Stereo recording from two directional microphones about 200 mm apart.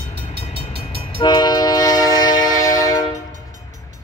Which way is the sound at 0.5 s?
30° left (ahead or behind).